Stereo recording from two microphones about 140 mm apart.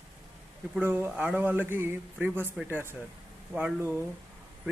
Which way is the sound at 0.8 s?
15° right (ahead or behind).